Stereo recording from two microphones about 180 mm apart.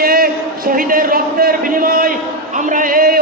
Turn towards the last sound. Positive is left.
turn(degrees=-55)  # may be behind; listen again after turning